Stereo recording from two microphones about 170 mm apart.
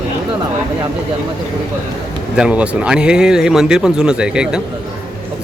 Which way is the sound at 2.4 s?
5° right (ahead or behind).